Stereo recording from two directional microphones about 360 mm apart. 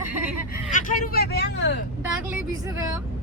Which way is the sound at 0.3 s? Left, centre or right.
Left.